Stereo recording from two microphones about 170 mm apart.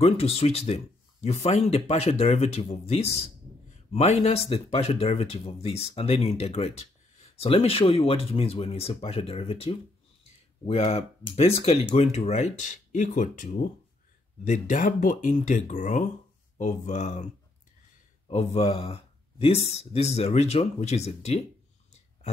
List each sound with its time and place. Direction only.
0.0 s speech: 35° left (ahead or behind)
18.3 s speech: 40° left (ahead or behind)